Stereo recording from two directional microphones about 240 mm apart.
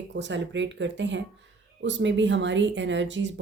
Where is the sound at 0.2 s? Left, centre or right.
Right.